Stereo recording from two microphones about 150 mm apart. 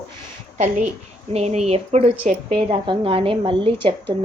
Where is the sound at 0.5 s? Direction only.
55° right (ahead or behind).